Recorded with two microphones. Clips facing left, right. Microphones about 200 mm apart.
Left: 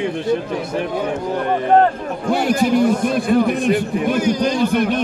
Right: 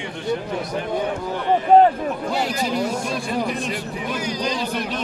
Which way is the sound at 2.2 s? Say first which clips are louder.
Left 10 dB; 50° left (ahead or behind).